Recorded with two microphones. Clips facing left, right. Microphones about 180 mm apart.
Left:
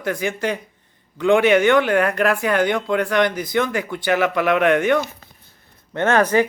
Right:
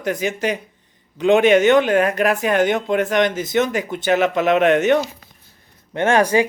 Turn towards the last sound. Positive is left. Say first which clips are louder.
# right 1 dB
turn(degrees=-15)  # may be behind; listen again after turning